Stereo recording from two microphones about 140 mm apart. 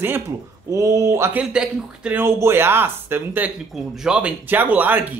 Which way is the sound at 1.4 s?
5° right (ahead or behind).